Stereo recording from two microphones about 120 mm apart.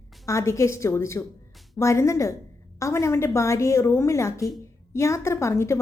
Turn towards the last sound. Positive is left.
turn(degrees=25)  # may be behind; listen again after turning